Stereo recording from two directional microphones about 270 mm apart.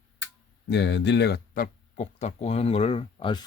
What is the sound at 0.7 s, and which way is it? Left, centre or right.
Speech, left.